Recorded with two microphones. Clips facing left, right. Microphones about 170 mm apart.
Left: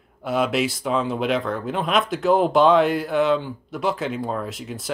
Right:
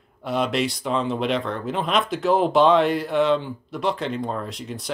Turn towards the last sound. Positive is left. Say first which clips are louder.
# left 1 dB
turn(degrees=0)  # may be behind; listen again after turning